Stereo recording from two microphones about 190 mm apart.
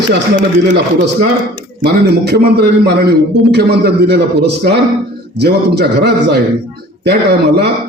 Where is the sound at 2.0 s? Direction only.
60° right (ahead or behind).